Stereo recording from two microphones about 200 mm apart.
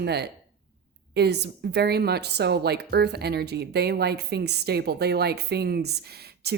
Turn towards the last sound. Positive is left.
turn(degrees=-55)  # may be behind; listen again after turning